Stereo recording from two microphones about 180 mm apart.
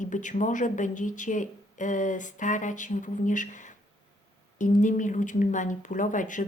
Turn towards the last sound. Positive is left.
turn(degrees=45)  # may be behind; listen again after turning